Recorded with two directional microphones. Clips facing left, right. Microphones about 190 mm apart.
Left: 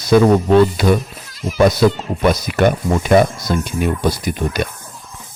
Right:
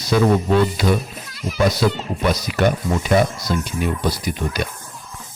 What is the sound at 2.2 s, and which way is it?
Speech, 50° left (ahead or behind).